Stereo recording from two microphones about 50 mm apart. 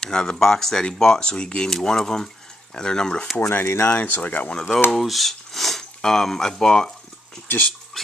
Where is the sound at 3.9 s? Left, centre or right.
Left.